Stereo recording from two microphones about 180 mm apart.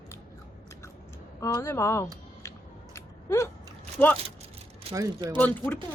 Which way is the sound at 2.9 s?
15° left (ahead or behind).